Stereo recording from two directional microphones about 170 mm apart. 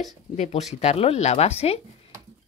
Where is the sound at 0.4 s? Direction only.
40° left (ahead or behind).